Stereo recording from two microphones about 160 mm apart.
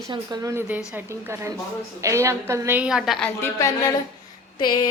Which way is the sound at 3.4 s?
20° left (ahead or behind).